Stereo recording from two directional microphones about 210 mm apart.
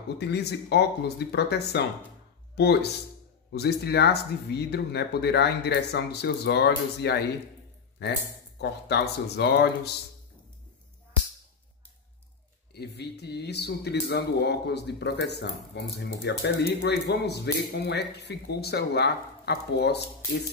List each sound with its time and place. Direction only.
0.2 s speech: 50° left (ahead or behind)
12.7 s speech: 50° left (ahead or behind)